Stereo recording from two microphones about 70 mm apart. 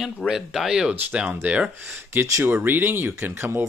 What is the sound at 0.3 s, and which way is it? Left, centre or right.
Speech, centre.